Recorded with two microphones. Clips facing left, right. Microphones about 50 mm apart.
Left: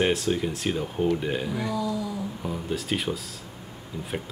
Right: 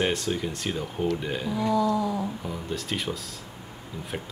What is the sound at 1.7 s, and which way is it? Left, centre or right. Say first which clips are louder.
Speech: right 8 dB; right.